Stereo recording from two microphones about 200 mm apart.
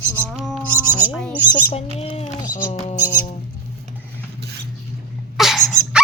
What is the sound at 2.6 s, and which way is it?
Speech, 40° left (ahead or behind).